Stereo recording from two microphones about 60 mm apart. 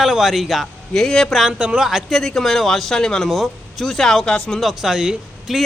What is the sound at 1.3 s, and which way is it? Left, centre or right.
Speech, centre.